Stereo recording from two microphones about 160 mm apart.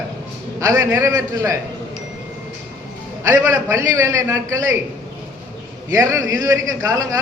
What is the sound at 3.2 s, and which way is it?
A man's voice, 15° right (ahead or behind).